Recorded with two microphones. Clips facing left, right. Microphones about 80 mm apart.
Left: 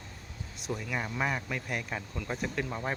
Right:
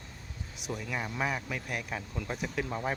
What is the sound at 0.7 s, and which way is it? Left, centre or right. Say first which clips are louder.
Speech: left 1 dB; centre.